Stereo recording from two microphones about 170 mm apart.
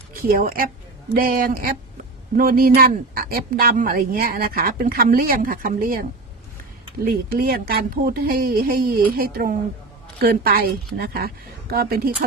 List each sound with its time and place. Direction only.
0.2 s a woman's voice: 60° right (ahead or behind)